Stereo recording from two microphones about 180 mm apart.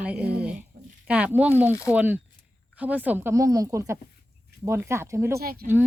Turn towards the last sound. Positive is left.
turn(degrees=-60)  # may be behind; listen again after turning